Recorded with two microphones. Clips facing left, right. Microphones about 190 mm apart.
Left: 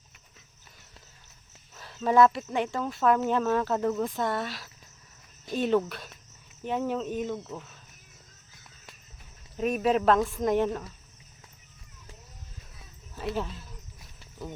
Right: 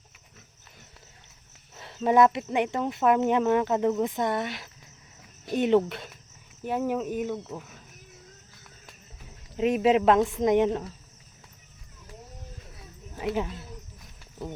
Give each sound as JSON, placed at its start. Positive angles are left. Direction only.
{"t": 1.7, "sound": "speech", "side_deg": -25}
{"t": 6.7, "sound": "speech", "side_deg": -10}
{"t": 9.6, "sound": "speech", "side_deg": -20}